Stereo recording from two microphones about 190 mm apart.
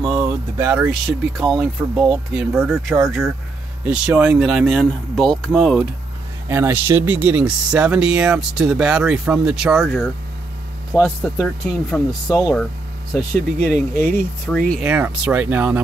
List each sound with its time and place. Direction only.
0.0 s a sound: 25° right (ahead or behind)
0.6 s speech: 10° right (ahead or behind)
6.5 s speech: 10° right (ahead or behind)
12.3 s speech: 20° left (ahead or behind)
13.1 s speech: 5° left (ahead or behind)
14.7 s speech: 5° right (ahead or behind)